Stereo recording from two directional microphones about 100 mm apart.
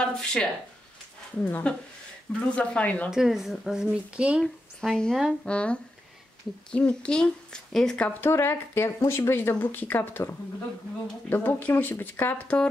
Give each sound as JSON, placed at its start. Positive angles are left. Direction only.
{"t": 0.0, "sound": "speech", "side_deg": 10}
{"t": 3.1, "sound": "speech", "side_deg": -5}
{"t": 4.4, "sound": "speech", "side_deg": 5}
{"t": 8.2, "sound": "speech", "side_deg": 20}